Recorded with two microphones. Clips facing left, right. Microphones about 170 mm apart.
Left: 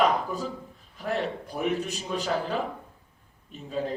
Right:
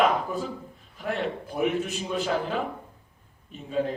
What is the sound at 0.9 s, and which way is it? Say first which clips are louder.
A man's voice: even; 40° left (ahead or behind).